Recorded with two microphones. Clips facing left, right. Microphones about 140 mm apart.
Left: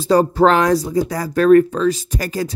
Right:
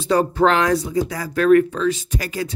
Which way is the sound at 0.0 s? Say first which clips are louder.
Left 4 dB; 40° left (ahead or behind).